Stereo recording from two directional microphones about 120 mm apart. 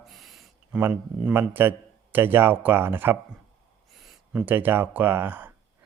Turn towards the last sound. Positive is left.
turn(degrees=-15)  # may be behind; listen again after turning